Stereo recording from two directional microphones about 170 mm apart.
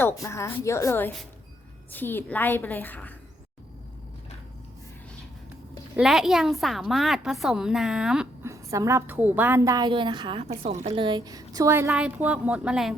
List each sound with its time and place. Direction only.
0.0 s a woman's voice: 15° left (ahead or behind)
6.0 s a woman's voice: centre (ahead or behind)
8.4 s a woman's voice: 20° right (ahead or behind)